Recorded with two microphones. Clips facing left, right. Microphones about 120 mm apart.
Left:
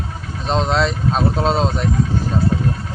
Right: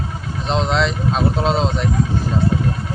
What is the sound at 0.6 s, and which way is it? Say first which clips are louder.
Speech: left 1 dB; 35° left (ahead or behind).